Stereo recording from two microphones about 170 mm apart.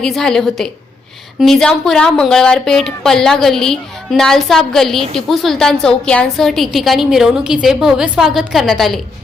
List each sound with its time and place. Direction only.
0.0 s a woman's voice: 5° left (ahead or behind)